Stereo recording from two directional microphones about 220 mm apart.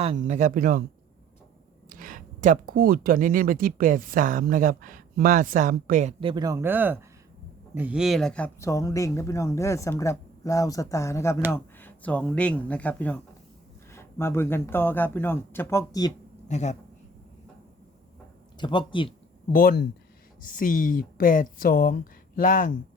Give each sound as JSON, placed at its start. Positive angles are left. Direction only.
{"t": 0.0, "sound": "speech", "side_deg": -30}
{"t": 1.9, "sound": "speech", "side_deg": -40}
{"t": 16.5, "sound": "a man's voice", "side_deg": 30}
{"t": 18.5, "sound": "speech", "side_deg": 20}
{"t": 19.5, "sound": "speech", "side_deg": 40}